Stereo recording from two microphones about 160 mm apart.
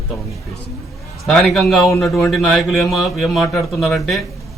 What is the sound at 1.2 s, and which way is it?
A man's voice, centre (ahead or behind).